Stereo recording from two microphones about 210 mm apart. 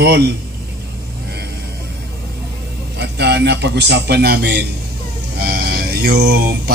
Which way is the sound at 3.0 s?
55° right (ahead or behind).